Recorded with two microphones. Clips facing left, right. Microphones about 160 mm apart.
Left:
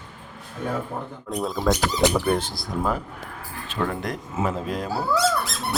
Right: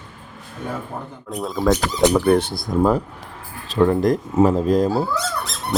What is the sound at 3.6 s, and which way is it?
Speech, 35° right (ahead or behind).